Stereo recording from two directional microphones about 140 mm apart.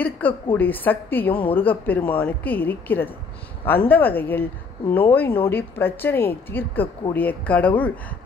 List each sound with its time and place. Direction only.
0.0 s speech: 10° left (ahead or behind)